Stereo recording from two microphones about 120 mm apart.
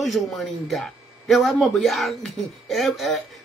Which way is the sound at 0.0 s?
Centre (ahead or behind).